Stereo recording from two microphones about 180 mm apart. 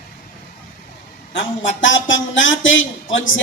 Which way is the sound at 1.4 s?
90° left.